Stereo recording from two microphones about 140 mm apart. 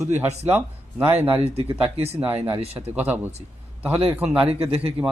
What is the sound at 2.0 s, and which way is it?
Speech, 45° right (ahead or behind).